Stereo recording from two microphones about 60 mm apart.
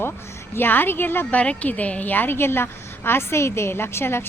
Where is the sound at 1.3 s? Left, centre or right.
Left.